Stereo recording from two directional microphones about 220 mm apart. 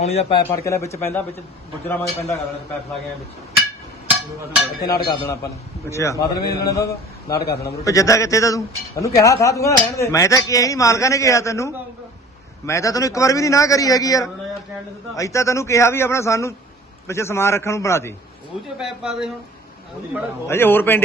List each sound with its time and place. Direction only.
0.0 s a man's voice: 30° left (ahead or behind); by 2.4 s 10° left (ahead or behind)
4.8 s speech: 45° left (ahead or behind)
5.0 s a man's voice: 15° left (ahead or behind)
7.3 s speech: 45° left (ahead or behind)
7.6 s a man's voice: 15° left (ahead or behind)
18.8 s speech: centre (ahead or behind)
20.5 s a man's voice: 10° left (ahead or behind)